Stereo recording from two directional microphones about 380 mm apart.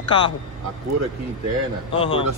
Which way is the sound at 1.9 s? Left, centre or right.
Centre.